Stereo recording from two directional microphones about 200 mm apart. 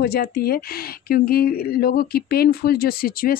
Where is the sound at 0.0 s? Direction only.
50° left (ahead or behind).